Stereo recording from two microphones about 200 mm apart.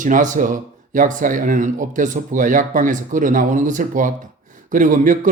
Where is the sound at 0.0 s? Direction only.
40° right (ahead or behind).